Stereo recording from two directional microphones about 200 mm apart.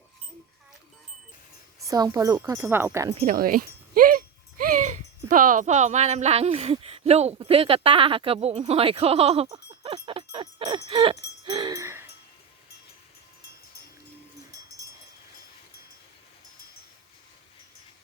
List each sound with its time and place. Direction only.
1.8 s speech: 15° right (ahead or behind)
3.2 s a sound: 40° right (ahead or behind)
5.3 s speech: 40° right (ahead or behind); by 12.0 s 15° right (ahead or behind)